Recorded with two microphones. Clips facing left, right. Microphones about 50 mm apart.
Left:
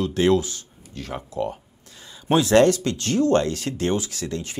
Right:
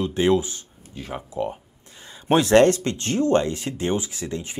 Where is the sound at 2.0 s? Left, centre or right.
Right.